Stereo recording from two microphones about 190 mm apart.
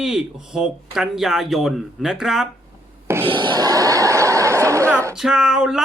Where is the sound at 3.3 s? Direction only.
25° right (ahead or behind).